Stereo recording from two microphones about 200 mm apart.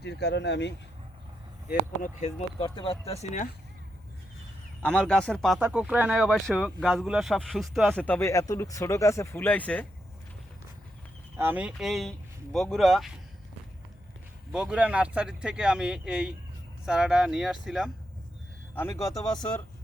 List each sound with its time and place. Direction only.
0.0 s speech: 55° left (ahead or behind)
2.2 s speech: 25° left (ahead or behind)
4.8 s speech: 5° left (ahead or behind)
8.0 s speech: 10° left (ahead or behind)
11.3 s speech: 10° right (ahead or behind)
14.5 s speech: 5° right (ahead or behind)
18.7 s speech: 10° left (ahead or behind)